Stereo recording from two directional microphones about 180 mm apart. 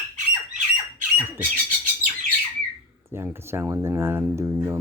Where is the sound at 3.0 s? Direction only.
15° right (ahead or behind).